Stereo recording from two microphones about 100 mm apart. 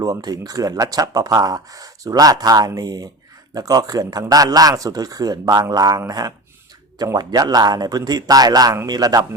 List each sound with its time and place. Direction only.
0.0 s speech: 40° right (ahead or behind)